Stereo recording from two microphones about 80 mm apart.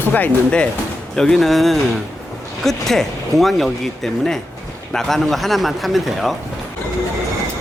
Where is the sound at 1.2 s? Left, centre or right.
Centre.